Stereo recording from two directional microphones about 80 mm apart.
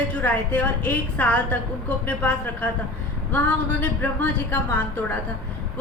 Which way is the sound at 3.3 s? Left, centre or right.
Left.